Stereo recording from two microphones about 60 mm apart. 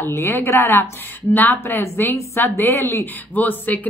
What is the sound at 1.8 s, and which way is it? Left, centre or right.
Speech, left.